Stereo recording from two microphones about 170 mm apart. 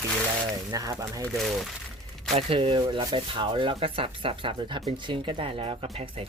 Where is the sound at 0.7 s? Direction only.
20° right (ahead or behind).